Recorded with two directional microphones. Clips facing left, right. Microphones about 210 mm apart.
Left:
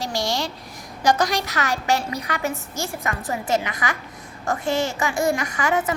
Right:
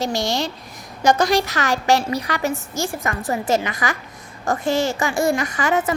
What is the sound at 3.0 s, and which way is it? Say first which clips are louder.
Speech: right 3 dB; 35° right (ahead or behind).